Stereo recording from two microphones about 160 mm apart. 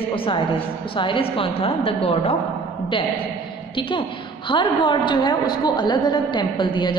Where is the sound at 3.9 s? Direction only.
30° left (ahead or behind).